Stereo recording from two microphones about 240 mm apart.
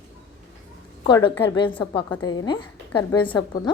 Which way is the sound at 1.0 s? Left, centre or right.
Centre.